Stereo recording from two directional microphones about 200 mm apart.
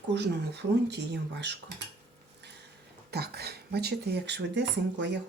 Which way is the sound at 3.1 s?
55° right (ahead or behind).